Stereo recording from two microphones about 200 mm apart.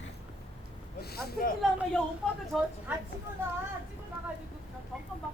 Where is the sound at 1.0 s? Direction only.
50° left (ahead or behind).